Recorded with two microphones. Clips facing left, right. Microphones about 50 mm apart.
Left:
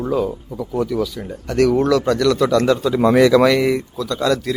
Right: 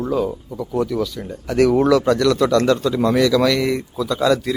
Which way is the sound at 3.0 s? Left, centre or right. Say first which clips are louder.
Left 7 dB; left.